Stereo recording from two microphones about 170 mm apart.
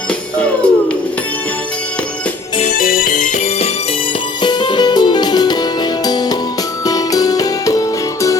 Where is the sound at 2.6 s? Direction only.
50° left (ahead or behind).